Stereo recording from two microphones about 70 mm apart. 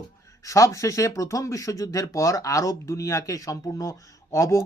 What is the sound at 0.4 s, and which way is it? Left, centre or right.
Speech, left.